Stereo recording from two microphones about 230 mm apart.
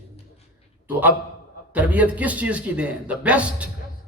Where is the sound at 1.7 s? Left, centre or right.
Centre.